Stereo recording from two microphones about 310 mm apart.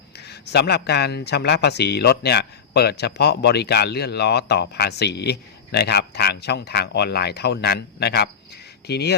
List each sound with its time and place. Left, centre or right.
0.2 s speech: left